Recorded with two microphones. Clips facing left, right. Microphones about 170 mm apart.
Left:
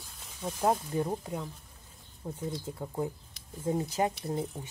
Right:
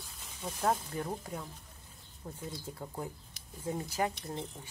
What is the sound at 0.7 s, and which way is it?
Speech, 20° left (ahead or behind).